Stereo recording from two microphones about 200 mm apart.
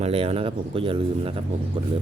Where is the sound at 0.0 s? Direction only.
30° right (ahead or behind).